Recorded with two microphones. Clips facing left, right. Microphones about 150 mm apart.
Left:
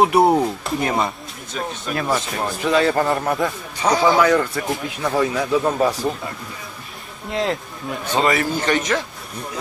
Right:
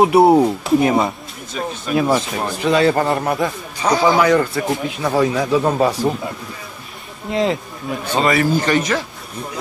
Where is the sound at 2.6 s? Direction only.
20° right (ahead or behind).